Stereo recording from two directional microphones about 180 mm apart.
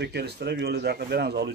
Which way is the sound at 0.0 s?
65° right (ahead or behind).